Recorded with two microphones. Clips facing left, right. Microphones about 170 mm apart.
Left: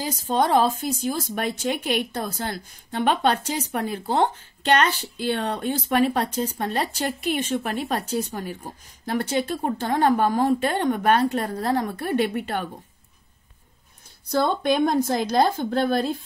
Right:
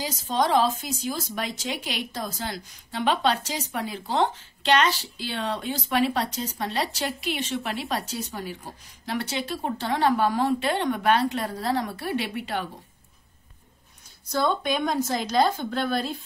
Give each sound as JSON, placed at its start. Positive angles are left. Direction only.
{"t": 0.3, "sound": "a woman's voice", "side_deg": 55}
{"t": 14.3, "sound": "a woman's voice", "side_deg": 55}